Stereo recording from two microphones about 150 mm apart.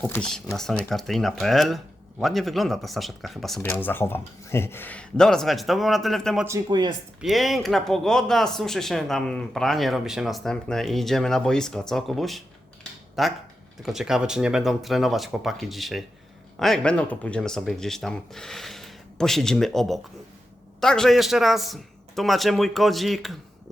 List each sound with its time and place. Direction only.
0.0 s speech: 10° left (ahead or behind)
3.6 s speech: 15° left (ahead or behind)
6.7 s speech: 30° right (ahead or behind)
7.2 s speech: centre (ahead or behind)